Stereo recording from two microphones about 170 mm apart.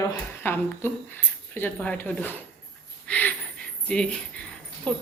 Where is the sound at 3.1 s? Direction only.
10° left (ahead or behind).